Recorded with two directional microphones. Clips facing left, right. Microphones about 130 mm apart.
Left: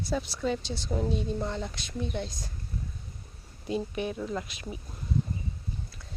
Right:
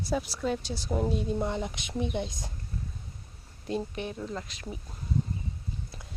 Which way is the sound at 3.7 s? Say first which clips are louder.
Left 2 dB; 15° left (ahead or behind).